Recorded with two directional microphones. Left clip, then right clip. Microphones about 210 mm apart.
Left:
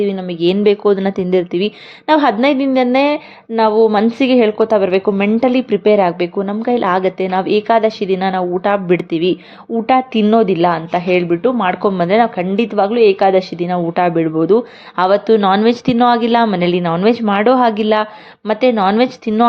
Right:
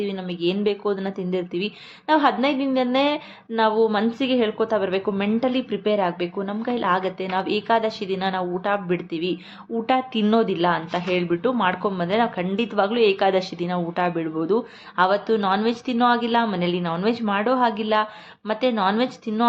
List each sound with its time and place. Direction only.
0.0 s speech: 30° left (ahead or behind)